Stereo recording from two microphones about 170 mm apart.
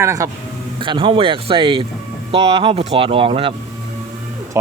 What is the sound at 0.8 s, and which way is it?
Speech, 30° right (ahead or behind).